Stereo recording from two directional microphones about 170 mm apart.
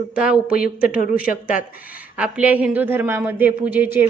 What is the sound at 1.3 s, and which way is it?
Speech, 55° left (ahead or behind).